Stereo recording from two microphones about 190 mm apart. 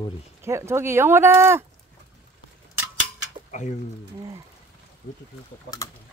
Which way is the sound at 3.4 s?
40° left (ahead or behind).